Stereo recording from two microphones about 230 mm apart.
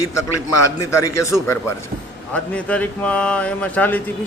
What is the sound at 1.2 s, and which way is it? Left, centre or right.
Speech, centre.